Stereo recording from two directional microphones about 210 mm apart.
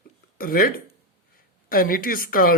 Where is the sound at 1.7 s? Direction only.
45° left (ahead or behind).